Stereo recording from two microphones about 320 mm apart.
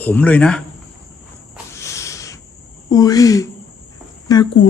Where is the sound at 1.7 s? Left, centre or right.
Centre.